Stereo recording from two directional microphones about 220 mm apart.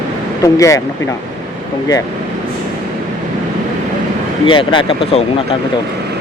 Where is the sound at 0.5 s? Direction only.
15° left (ahead or behind).